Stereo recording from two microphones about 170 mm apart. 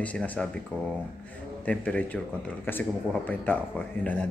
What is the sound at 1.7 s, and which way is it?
Speech, 5° left (ahead or behind).